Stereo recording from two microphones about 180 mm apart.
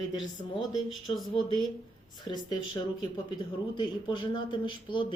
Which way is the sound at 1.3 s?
25° left (ahead or behind).